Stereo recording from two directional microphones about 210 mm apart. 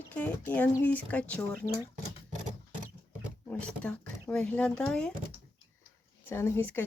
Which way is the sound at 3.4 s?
5° left (ahead or behind).